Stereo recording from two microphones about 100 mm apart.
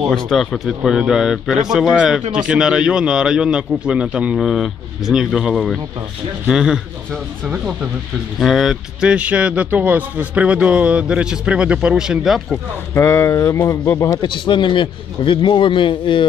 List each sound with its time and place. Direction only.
0.1 s speech: centre (ahead or behind)
12.9 s speech: 30° left (ahead or behind)
14.2 s a man's voice: 50° left (ahead or behind)